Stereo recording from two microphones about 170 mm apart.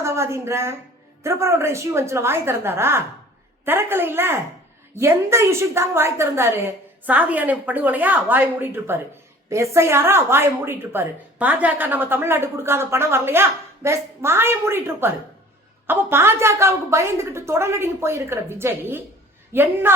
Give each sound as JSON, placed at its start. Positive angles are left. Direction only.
{"t": 0.0, "sound": "a woman's voice", "side_deg": -15}